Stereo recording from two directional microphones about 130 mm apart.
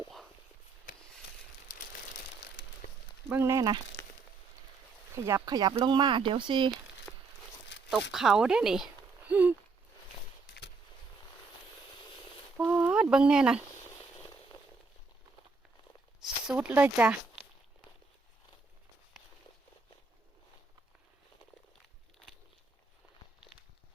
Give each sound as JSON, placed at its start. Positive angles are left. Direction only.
{"t": 3.2, "sound": "speech", "side_deg": -20}
{"t": 5.1, "sound": "speech", "side_deg": -25}
{"t": 7.1, "sound": "a sound", "side_deg": 15}
{"t": 7.9, "sound": "speech", "side_deg": -5}
{"t": 9.3, "sound": "a sound", "side_deg": -15}
{"t": 12.6, "sound": "speech", "side_deg": -10}
{"t": 16.2, "sound": "speech", "side_deg": -5}